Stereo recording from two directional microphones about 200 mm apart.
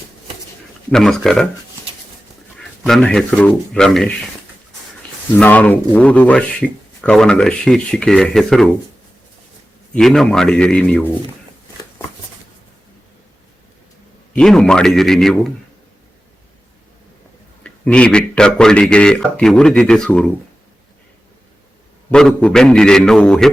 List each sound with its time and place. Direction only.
0.9 s speech: centre (ahead or behind)
2.8 s speech: 5° left (ahead or behind)
5.4 s speech: 5° left (ahead or behind)
9.9 s speech: centre (ahead or behind)
14.3 s speech: 5° left (ahead or behind)
17.6 s speech: 5° left (ahead or behind)
22.1 s speech: 5° left (ahead or behind)